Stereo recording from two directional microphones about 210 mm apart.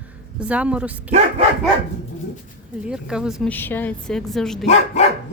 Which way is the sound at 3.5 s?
10° left (ahead or behind).